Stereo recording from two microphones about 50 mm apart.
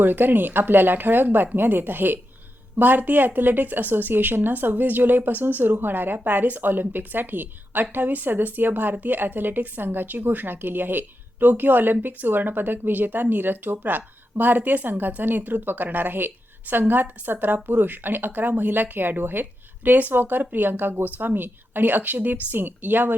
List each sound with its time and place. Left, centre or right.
0.0 s speech: right